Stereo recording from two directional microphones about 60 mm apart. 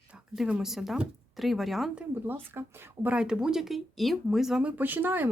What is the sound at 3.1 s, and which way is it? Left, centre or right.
Speech, centre.